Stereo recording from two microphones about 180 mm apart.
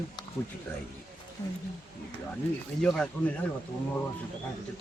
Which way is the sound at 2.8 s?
5° left (ahead or behind).